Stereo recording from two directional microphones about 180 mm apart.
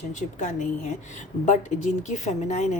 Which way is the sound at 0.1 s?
45° left (ahead or behind).